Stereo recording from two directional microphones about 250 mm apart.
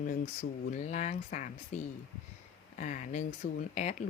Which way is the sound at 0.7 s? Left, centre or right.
Left.